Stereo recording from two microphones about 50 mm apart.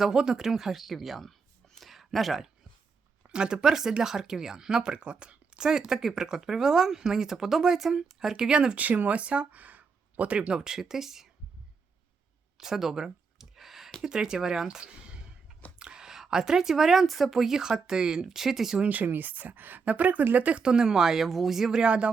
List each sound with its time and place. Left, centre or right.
0.0 s speech: centre
3.2 s speech: centre
8.8 s speech: right; by 11.3 s centre
12.5 s a sound: centre
14.0 s a woman's voice: centre
18.8 s speech: right; by 21.8 s centre
21.8 s speech: right